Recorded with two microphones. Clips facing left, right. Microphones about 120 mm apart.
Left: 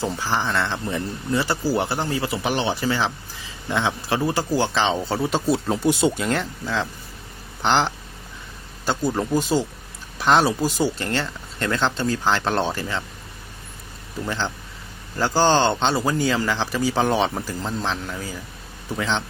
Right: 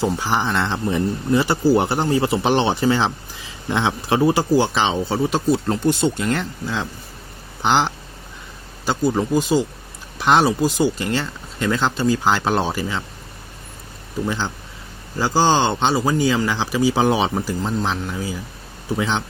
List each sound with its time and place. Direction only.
0.0 s speech: 20° right (ahead or behind)
5.1 s speech: centre (ahead or behind)
8.9 s speech: 5° right (ahead or behind)
15.2 s speech: 10° right (ahead or behind)